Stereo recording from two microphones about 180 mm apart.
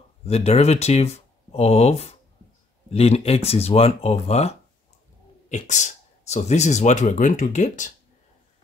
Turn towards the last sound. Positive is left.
turn(degrees=45)  # may be behind; listen again after turning